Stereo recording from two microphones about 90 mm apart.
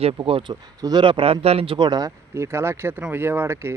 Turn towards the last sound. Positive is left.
turn(degrees=-30)  # may be behind; listen again after turning